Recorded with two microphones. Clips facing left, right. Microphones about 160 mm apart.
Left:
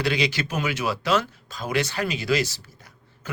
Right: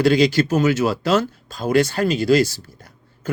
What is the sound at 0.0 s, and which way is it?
Speech, 45° right (ahead or behind).